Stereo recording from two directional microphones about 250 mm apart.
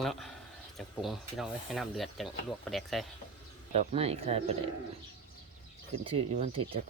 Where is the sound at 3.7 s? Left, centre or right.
Right.